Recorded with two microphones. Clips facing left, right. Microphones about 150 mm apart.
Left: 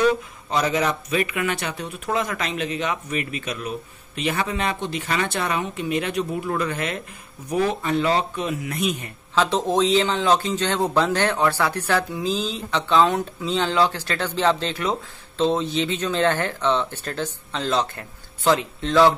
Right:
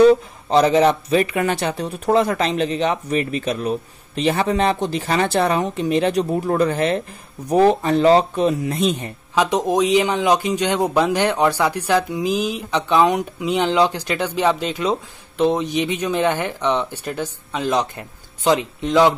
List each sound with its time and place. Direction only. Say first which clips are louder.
0.0 s speech: right 8 dB; 30° right (ahead or behind)
9.3 s a man's voice: right 3 dB; 15° right (ahead or behind)